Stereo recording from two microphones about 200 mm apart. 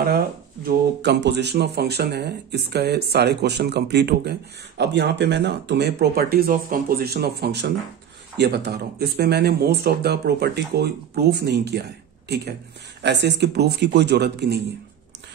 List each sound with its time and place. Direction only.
0.7 s speech: 60° right (ahead or behind)